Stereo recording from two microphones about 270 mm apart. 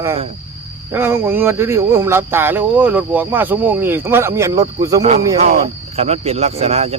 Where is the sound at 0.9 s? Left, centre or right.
Centre.